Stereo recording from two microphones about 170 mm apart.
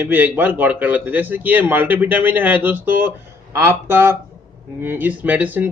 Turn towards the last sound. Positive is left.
turn(degrees=-10)  # may be behind; listen again after turning